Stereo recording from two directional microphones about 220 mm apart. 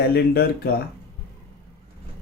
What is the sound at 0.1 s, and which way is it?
Speech, 45° left (ahead or behind).